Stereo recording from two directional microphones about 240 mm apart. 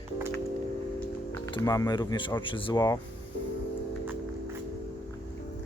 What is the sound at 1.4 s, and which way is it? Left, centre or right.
Speech, centre.